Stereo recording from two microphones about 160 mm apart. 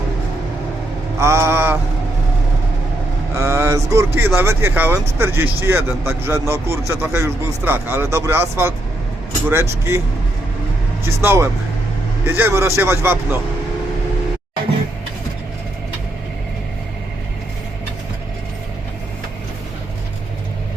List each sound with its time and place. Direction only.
1.2 s speech: 15° right (ahead or behind)
3.3 s speech: 20° right (ahead or behind)
11.0 s speech: 15° right (ahead or behind)